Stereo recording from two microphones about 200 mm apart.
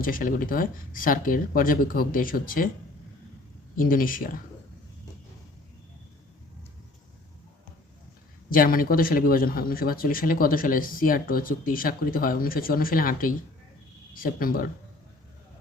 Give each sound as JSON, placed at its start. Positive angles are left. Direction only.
{"t": 0.0, "sound": "speech", "side_deg": 45}
{"t": 3.8, "sound": "speech", "side_deg": 45}
{"t": 8.4, "sound": "speech", "side_deg": 45}